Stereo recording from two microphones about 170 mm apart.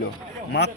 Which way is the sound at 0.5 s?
80° left.